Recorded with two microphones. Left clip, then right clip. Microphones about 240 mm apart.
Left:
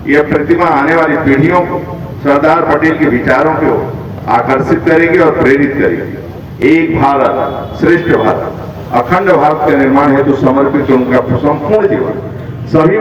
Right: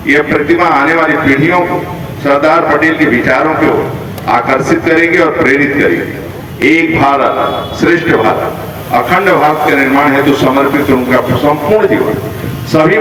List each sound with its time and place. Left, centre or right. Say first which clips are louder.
0.1 s a man's voice: even; right